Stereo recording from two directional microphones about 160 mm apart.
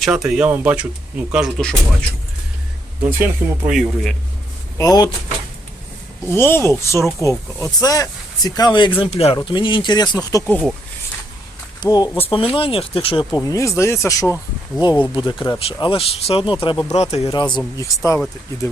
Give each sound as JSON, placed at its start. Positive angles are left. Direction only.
{"t": 0.0, "sound": "speech", "side_deg": -5}
{"t": 3.0, "sound": "speech", "side_deg": -10}
{"t": 4.8, "sound": "speech", "side_deg": 25}
{"t": 6.2, "sound": "speech", "side_deg": 15}
{"t": 9.0, "sound": "speech", "side_deg": 40}
{"t": 10.4, "sound": "speech", "side_deg": 10}
{"t": 11.8, "sound": "speech", "side_deg": 25}
{"t": 12.2, "sound": "speech", "side_deg": 35}
{"t": 15.4, "sound": "speech", "side_deg": 35}
{"t": 17.0, "sound": "speech", "side_deg": 40}
{"t": 17.7, "sound": "speech", "side_deg": 20}